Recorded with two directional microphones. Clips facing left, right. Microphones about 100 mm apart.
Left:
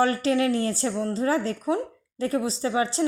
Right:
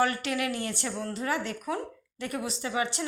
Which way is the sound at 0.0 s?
30° left (ahead or behind).